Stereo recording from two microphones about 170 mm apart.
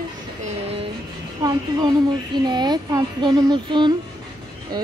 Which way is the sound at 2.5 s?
25° right (ahead or behind).